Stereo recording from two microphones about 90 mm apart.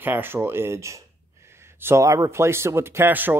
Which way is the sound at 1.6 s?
25° right (ahead or behind).